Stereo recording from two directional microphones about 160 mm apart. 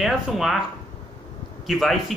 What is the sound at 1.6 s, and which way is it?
Speech, centre (ahead or behind).